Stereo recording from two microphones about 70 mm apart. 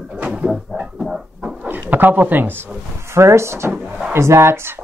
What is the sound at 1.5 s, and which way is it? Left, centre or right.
Bird, right.